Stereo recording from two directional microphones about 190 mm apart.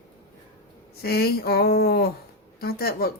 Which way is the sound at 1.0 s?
55° left (ahead or behind).